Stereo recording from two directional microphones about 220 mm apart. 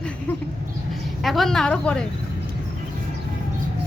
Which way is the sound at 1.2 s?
Centre (ahead or behind).